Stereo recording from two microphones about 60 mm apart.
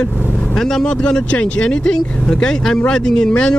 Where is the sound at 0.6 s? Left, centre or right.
Centre.